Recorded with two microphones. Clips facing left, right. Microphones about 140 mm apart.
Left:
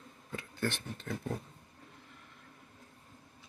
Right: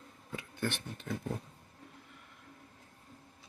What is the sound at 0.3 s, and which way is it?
Speech, 15° right (ahead or behind).